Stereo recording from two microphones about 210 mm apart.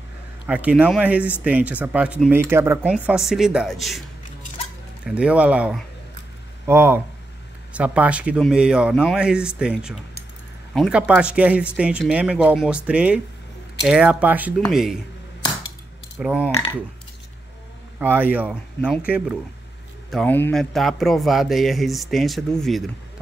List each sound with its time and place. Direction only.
0.5 s a man's voice: 5° right (ahead or behind)
5.0 s a man's voice: 5° right (ahead or behind)
16.2 s speech: 5° right (ahead or behind)
16.4 s speech: 20° left (ahead or behind)
17.9 s speech: 10° right (ahead or behind)
20.1 s a man's voice: 5° left (ahead or behind)